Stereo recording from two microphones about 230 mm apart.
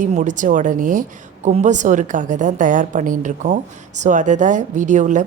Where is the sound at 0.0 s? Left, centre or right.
Right.